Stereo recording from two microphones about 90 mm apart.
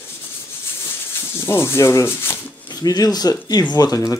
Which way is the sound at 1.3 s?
25° left (ahead or behind).